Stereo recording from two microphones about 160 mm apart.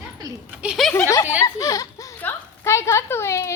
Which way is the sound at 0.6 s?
Centre (ahead or behind).